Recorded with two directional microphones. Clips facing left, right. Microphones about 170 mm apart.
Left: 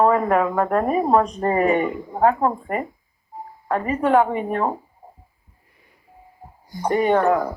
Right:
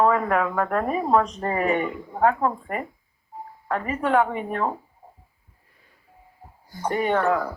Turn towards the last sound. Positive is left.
turn(degrees=35)  # may be behind; listen again after turning